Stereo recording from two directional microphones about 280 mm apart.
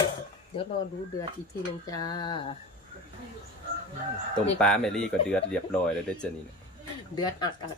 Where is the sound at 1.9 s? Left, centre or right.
Centre.